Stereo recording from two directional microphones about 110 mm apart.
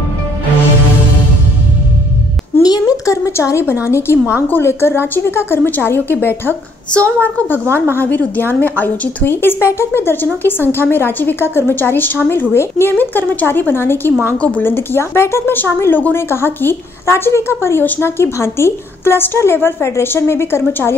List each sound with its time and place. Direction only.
2.6 s a sound: 35° left (ahead or behind)
3.8 s a woman's voice: 25° left (ahead or behind)
7.6 s speech: 25° right (ahead or behind)
7.9 s a woman's voice: 15° left (ahead or behind)